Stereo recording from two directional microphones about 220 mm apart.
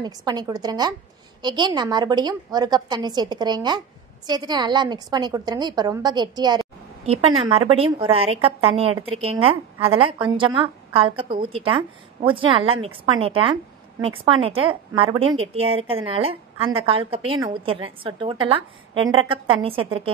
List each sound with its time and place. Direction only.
0.0 s a woman's voice: 20° right (ahead or behind)